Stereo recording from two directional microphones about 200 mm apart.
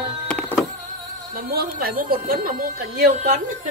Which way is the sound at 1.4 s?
50° right (ahead or behind).